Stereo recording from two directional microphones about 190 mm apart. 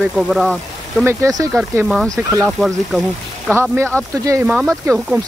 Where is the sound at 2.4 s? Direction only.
Centre (ahead or behind).